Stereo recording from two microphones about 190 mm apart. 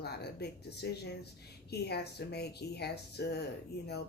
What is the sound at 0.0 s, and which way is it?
Speech, 60° left (ahead or behind).